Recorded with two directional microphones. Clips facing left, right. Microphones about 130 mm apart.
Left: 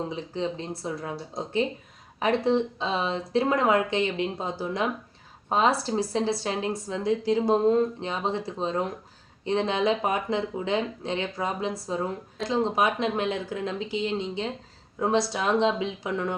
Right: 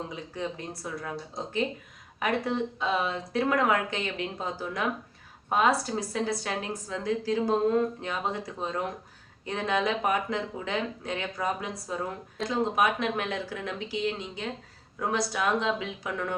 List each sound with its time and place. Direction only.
0.1 s speech: 25° left (ahead or behind)